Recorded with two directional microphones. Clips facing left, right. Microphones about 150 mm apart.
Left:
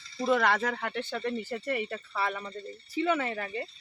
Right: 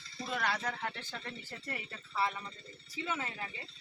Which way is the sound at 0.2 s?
65° left (ahead or behind).